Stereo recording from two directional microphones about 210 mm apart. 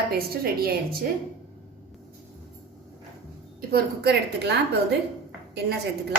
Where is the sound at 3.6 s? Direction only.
50° right (ahead or behind).